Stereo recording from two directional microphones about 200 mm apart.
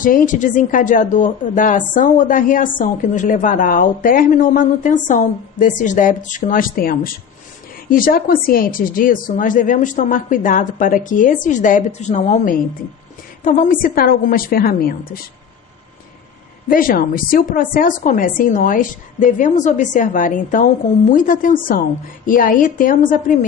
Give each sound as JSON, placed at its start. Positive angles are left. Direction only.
{"t": 0.0, "sound": "a woman's voice", "side_deg": 40}
{"t": 16.6, "sound": "a woman's voice", "side_deg": 45}